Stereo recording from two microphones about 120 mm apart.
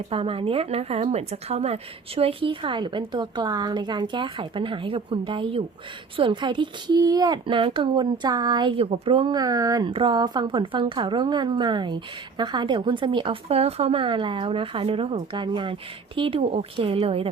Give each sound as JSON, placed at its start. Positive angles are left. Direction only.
{"t": 0.1, "sound": "a woman's voice", "side_deg": -50}
{"t": 7.4, "sound": "speech", "side_deg": -45}
{"t": 9.9, "sound": "a woman's voice", "side_deg": -45}